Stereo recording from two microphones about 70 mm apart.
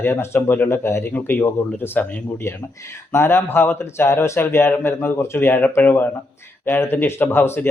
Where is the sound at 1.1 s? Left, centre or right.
Left.